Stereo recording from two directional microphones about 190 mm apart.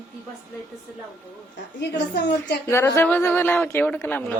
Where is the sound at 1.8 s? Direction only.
60° left (ahead or behind).